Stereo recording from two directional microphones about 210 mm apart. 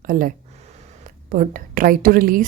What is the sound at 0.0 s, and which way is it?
A woman's voice, 40° right (ahead or behind).